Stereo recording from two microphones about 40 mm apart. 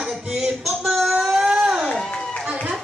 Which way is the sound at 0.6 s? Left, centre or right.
Centre.